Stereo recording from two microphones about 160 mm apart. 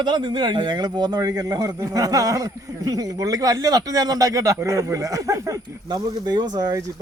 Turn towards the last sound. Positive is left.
turn(degrees=-25)  # may be behind; listen again after turning